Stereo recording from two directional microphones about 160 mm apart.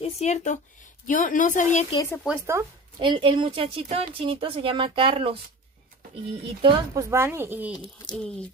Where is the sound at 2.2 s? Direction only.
15° right (ahead or behind).